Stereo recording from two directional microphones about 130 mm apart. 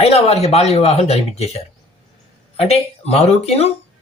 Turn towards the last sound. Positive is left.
turn(degrees=55)  # may be behind; listen again after turning